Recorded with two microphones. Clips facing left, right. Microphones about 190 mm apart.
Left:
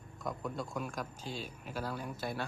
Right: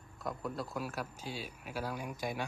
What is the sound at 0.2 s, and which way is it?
Speech, centre (ahead or behind).